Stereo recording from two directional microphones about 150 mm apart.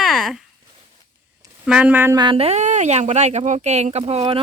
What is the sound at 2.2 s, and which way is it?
Speech, 35° right (ahead or behind).